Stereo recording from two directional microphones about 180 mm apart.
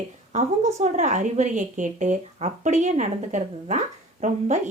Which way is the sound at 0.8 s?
40° right (ahead or behind).